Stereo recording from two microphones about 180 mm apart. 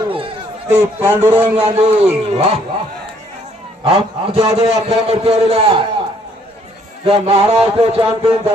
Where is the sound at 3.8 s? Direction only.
30° right (ahead or behind).